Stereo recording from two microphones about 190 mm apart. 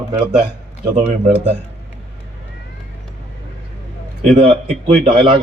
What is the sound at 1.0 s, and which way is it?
Speech, 35° right (ahead or behind).